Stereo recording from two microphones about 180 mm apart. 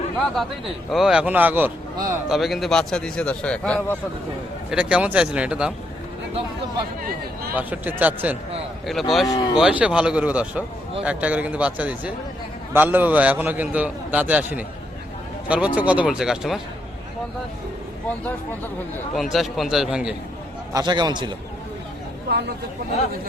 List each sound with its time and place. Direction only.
0.9 s a man's voice: centre (ahead or behind)
2.3 s a man's voice: centre (ahead or behind)
4.7 s a man's voice: 5° right (ahead or behind)
7.5 s a man's voice: 10° right (ahead or behind)
9.2 s speech: 25° left (ahead or behind)
9.6 s a man's voice: 5° right (ahead or behind)
19.1 s a man's voice: centre (ahead or behind)
20.7 s a man's voice: 25° right (ahead or behind)
22.3 s speech: 65° right (ahead or behind)